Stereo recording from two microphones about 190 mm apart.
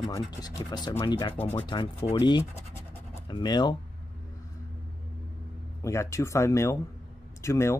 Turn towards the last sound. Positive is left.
turn(degrees=15)  # may be behind; listen again after turning